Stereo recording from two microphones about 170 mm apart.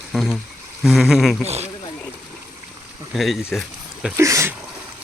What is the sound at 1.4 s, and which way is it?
Speech, 40° right (ahead or behind).